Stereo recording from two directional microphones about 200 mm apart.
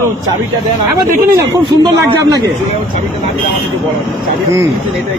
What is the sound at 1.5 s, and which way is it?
Speech, 15° right (ahead or behind).